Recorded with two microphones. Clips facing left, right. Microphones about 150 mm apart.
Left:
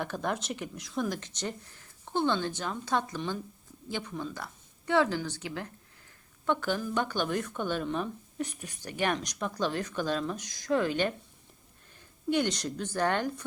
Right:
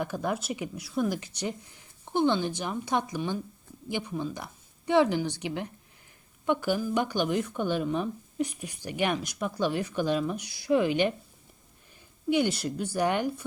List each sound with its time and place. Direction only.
0.0 s speech: 10° right (ahead or behind)
12.3 s speech: 10° right (ahead or behind)